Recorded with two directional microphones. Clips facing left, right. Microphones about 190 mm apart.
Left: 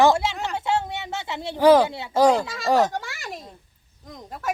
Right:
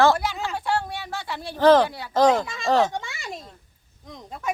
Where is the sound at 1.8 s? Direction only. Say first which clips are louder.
Left 2 dB; 25° left (ahead or behind).